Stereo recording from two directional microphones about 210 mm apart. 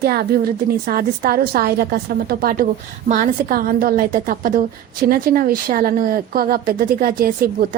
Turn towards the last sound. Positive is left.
turn(degrees=-45)  # may be behind; listen again after turning